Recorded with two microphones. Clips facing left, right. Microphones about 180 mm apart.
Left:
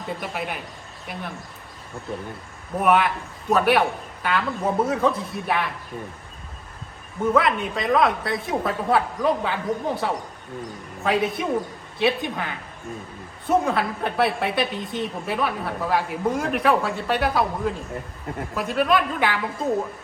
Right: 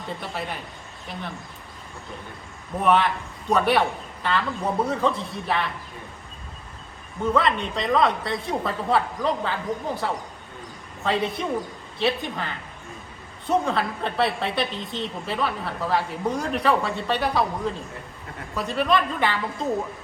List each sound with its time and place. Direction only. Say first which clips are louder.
0.1 s speech: left 2 dB; 10° left (ahead or behind)
2.8 s a woman's voice: left 1 dB; 5° left (ahead or behind)
7.3 s a woman's voice: left 2 dB; 5° left (ahead or behind)
14.8 s a woman's voice: left 3 dB; 25° right (ahead or behind)
15.3 s a woman's voice: left 1 dB; 5° left (ahead or behind)